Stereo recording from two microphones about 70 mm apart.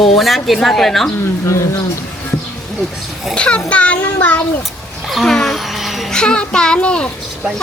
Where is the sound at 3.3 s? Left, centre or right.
Centre.